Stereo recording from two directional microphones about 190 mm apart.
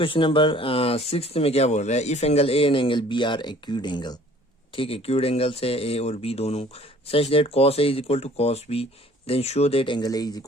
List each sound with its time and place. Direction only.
0.0 s speech: 25° left (ahead or behind)